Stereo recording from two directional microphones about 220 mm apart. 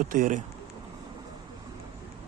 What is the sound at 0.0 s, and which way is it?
Speech, 40° right (ahead or behind).